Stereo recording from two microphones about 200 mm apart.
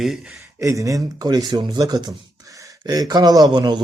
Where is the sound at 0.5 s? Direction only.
15° right (ahead or behind).